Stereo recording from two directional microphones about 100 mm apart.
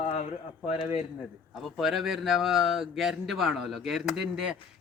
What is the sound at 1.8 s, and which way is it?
Speech, 5° right (ahead or behind).